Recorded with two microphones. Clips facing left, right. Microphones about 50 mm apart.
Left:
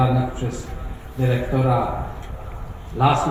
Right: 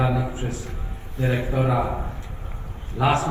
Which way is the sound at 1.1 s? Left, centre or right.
Right.